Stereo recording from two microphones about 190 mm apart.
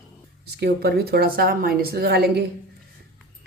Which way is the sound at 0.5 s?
60° right (ahead or behind).